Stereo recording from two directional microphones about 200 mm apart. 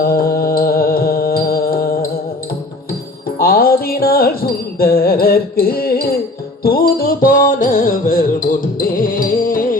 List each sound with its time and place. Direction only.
0.0 s music: 50° left (ahead or behind)
3.3 s music: 50° left (ahead or behind)